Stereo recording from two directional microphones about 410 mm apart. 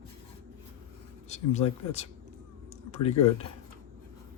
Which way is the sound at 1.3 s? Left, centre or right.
Centre.